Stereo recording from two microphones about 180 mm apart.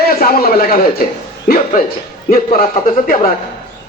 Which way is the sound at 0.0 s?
55° left (ahead or behind).